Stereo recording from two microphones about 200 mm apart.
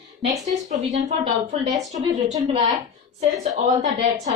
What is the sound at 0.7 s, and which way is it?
Speech, 35° right (ahead or behind).